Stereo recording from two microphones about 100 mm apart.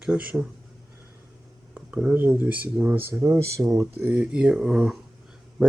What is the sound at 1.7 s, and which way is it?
Speech, 10° right (ahead or behind).